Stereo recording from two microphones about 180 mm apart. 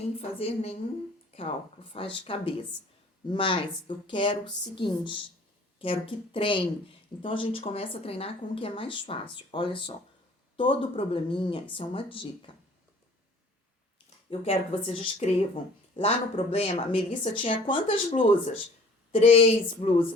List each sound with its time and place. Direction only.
0.2 s a woman's voice: 35° left (ahead or behind)
14.3 s speech: 35° left (ahead or behind)
17.3 s speech: 30° left (ahead or behind)
19.2 s speech: 35° left (ahead or behind)